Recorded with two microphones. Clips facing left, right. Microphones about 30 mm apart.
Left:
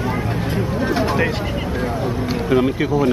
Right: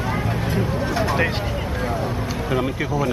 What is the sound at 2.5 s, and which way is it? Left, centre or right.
Speech, centre.